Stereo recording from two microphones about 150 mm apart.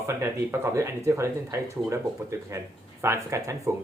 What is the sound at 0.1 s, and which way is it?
Speech, 20° right (ahead or behind).